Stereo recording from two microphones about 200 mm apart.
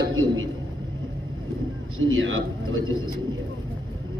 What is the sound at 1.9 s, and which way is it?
Speech, 75° right (ahead or behind).